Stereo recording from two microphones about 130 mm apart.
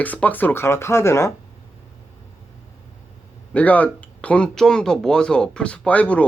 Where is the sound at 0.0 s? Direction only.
10° left (ahead or behind).